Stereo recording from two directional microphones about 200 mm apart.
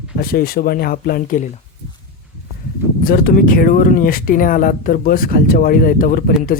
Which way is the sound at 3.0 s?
45° left (ahead or behind).